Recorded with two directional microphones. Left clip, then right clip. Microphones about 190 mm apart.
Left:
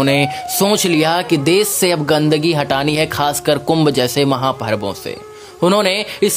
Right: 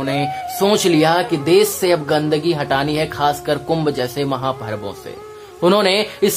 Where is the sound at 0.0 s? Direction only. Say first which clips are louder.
Left 5 dB; 40° left (ahead or behind).